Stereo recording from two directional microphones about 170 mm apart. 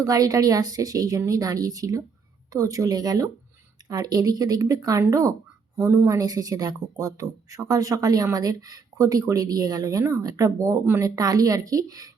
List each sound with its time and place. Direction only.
0.0 s speech: 20° right (ahead or behind)